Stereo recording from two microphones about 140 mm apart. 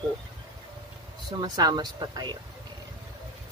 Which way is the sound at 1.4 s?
30° right (ahead or behind).